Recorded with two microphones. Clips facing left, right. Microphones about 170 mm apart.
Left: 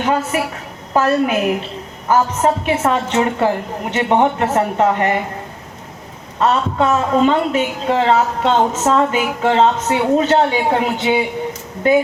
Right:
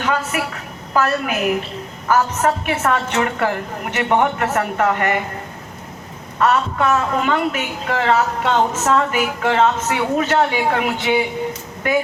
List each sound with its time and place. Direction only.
0.0 s a woman's voice: 30° left (ahead or behind)
6.4 s a woman's voice: 25° left (ahead or behind)